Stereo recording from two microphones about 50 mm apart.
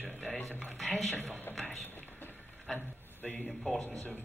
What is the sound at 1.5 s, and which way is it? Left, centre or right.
Speech, left.